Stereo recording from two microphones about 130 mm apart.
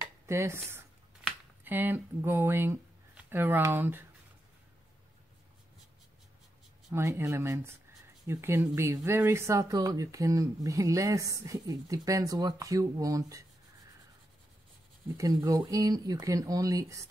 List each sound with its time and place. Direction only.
0.0 s a sound: 20° right (ahead or behind)
1.6 s speech: 15° right (ahead or behind)
6.9 s speech: 20° right (ahead or behind)
15.1 s speech: 25° right (ahead or behind)